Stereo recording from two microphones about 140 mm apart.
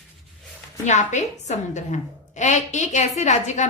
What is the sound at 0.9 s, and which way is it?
A woman's voice, 55° left (ahead or behind).